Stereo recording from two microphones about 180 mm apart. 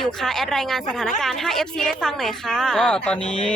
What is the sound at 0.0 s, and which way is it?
Speech, 5° left (ahead or behind).